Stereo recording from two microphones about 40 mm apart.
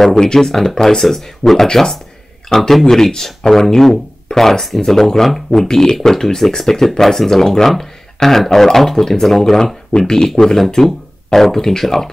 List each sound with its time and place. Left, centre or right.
0.1 s speech: centre
9.9 s speech: centre